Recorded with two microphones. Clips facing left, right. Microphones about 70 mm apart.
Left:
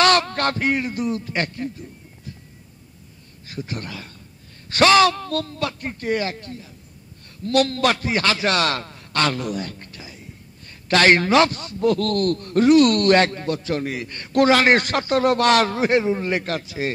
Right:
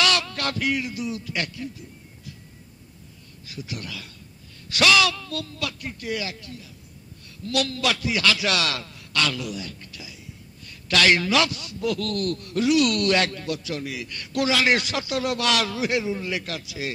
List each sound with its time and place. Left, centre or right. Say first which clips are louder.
0.0 s a man's voice: left 6 dB; left
3.4 s a man's voice: left 4 dB; left